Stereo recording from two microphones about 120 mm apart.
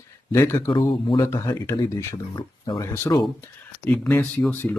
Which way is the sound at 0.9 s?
45° left (ahead or behind).